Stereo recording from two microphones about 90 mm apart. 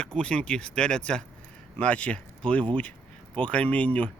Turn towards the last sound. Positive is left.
turn(degrees=15)  # may be behind; listen again after turning